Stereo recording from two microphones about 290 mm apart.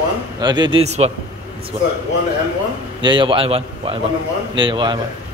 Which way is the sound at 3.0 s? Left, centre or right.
Centre.